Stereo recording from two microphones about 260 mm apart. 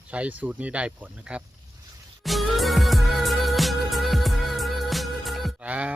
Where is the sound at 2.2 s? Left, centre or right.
Centre.